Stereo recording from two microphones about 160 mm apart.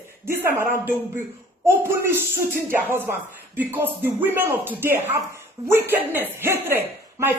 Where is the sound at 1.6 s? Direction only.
15° right (ahead or behind).